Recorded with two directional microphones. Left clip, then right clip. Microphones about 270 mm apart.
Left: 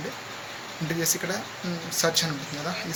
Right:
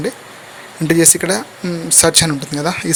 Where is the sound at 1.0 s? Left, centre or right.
Right.